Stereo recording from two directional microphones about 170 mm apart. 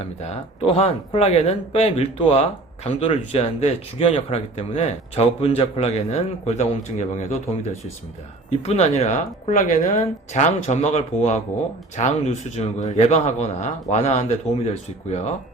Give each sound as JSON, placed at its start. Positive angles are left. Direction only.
{"t": 0.0, "sound": "a woman's voice", "side_deg": 40}